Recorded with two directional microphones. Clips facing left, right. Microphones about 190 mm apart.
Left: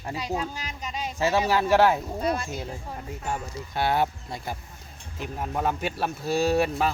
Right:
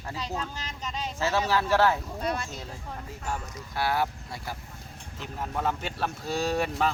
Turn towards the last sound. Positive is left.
turn(degrees=5)  # may be behind; listen again after turning